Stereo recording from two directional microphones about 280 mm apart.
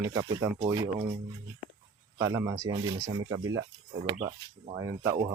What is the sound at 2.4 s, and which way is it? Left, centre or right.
Speech, centre.